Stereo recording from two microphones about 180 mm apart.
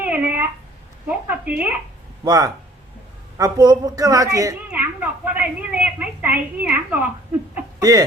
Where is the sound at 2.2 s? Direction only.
20° right (ahead or behind).